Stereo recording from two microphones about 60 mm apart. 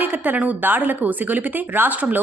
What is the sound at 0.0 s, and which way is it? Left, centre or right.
A woman's voice, right.